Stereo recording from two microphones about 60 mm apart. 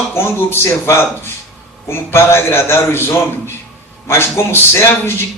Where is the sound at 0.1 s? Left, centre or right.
Left.